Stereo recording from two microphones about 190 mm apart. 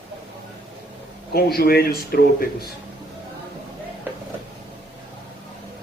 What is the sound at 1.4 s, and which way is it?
A man's voice, 55° left (ahead or behind).